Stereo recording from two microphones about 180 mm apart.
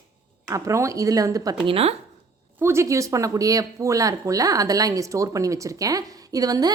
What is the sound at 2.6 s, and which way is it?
Speech, 15° right (ahead or behind).